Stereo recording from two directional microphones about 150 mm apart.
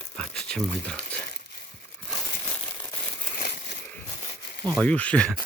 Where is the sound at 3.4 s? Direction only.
90° left.